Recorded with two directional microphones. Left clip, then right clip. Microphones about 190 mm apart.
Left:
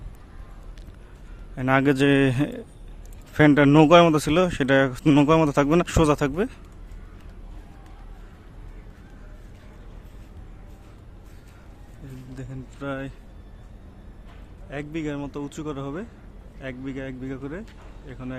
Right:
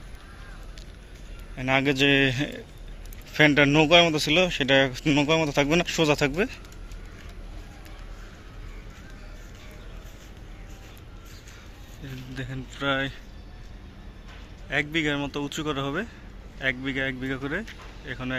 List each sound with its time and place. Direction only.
1.5 s a man's voice: 35° left (ahead or behind)
12.3 s a sound: 5° left (ahead or behind)
14.7 s speech: 5° left (ahead or behind)